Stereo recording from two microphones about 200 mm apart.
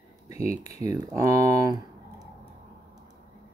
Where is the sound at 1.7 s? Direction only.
20° right (ahead or behind).